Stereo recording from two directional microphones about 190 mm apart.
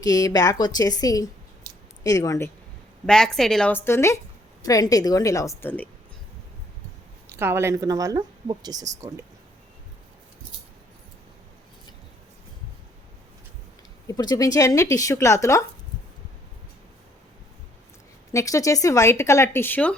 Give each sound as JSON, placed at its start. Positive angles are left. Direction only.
{"t": 0.0, "sound": "a woman's voice", "side_deg": 20}
{"t": 3.1, "sound": "a woman's voice", "side_deg": 5}
{"t": 7.3, "sound": "speech", "side_deg": -15}
{"t": 14.1, "sound": "speech", "side_deg": 20}
{"t": 18.3, "sound": "speech", "side_deg": 15}